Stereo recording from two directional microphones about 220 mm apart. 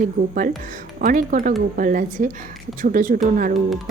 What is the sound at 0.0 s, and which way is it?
A woman's voice, 40° right (ahead or behind).